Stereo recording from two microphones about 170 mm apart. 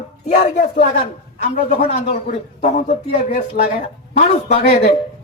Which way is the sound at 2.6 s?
40° left (ahead or behind).